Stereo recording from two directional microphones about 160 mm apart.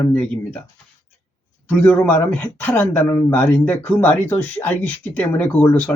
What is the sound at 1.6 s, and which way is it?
Speech, 10° left (ahead or behind).